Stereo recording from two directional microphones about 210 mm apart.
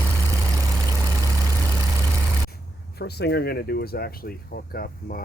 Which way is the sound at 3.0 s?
50° left (ahead or behind).